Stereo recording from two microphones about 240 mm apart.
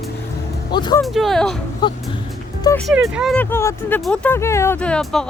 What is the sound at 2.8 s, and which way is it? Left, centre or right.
Speech, centre.